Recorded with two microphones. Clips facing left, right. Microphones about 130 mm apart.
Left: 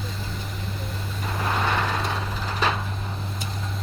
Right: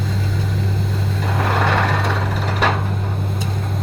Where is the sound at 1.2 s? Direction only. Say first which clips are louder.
Right 6 dB; 75° right (ahead or behind).